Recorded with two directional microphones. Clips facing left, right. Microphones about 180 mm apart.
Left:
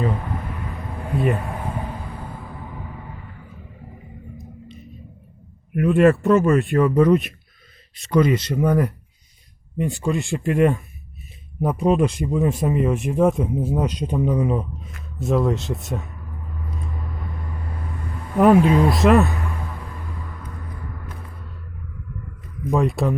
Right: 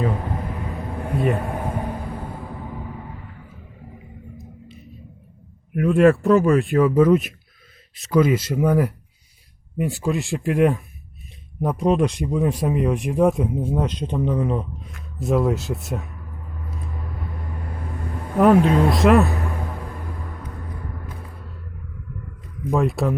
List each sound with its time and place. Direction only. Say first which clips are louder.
1.1 s speech: even; centre (ahead or behind)
1.4 s a sound: right 3 dB; 50° right (ahead or behind)
5.7 s speech: even; centre (ahead or behind)
18.3 s speech: left 1 dB; 5° left (ahead or behind)
22.7 s speech: even; centre (ahead or behind)